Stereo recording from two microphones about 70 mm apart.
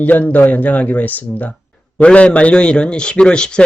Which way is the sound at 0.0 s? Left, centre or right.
Left.